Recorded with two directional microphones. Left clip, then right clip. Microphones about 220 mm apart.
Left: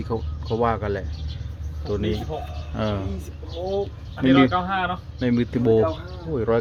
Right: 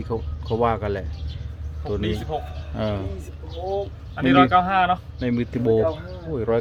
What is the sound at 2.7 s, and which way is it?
Speech, centre (ahead or behind).